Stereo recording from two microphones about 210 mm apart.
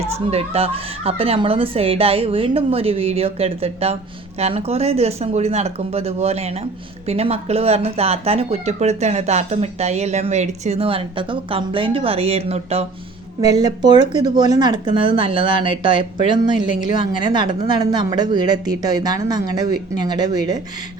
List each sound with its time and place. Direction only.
0.3 s speech: 30° right (ahead or behind)
13.4 s speech: 20° right (ahead or behind)